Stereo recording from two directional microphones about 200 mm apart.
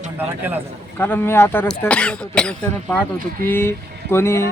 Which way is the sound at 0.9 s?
10° left (ahead or behind).